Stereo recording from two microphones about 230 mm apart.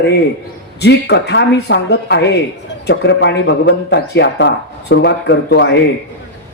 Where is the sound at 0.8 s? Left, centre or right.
Left.